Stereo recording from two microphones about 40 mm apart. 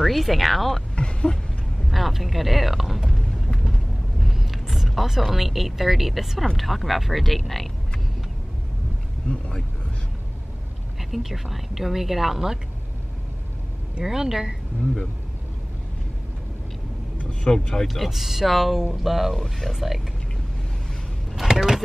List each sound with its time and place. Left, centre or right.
0.0 s a woman's voice: centre
0.9 s vehicle: left
1.9 s a woman's voice: centre
3.5 s a sound: centre
6.5 s a woman's voice: centre
9.3 s speech: centre
11.1 s a woman's voice: centre
14.0 s speech: centre
17.2 s speech: left
17.8 s a woman's voice: centre
19.7 s a woman's voice: centre
21.5 s vehicle: right